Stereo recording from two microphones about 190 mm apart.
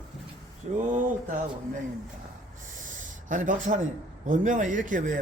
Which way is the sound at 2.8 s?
45° right (ahead or behind).